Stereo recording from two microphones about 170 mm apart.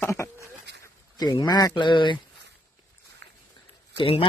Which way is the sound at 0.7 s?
90° right.